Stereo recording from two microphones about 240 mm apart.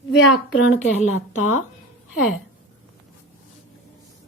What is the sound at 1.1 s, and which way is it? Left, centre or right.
Speech, left.